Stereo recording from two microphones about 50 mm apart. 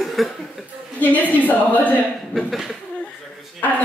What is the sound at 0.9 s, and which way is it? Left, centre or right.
A woman's voice, left.